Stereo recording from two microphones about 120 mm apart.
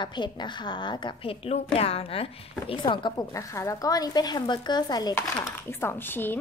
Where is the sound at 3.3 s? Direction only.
25° left (ahead or behind).